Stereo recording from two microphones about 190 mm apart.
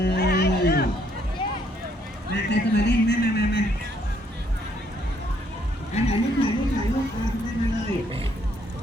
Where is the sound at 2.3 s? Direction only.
60° left (ahead or behind).